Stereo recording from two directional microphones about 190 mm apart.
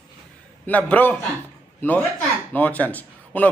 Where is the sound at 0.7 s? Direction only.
10° left (ahead or behind).